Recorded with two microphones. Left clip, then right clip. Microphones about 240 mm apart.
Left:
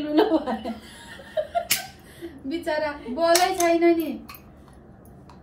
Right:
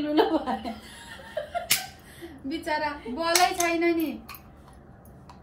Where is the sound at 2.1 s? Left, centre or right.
Centre.